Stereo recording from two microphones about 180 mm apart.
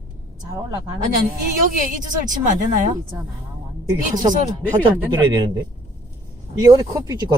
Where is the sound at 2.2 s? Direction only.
45° right (ahead or behind).